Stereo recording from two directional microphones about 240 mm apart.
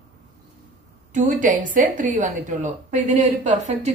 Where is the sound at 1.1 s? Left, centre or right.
Right.